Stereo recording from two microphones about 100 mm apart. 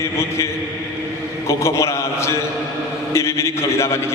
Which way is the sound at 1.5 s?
30° left (ahead or behind).